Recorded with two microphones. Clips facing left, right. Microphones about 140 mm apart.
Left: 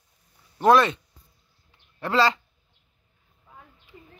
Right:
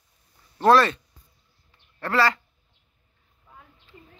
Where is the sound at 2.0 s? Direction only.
20° left (ahead or behind).